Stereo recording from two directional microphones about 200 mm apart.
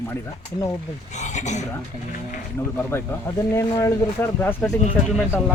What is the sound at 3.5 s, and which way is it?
Speech, 15° left (ahead or behind).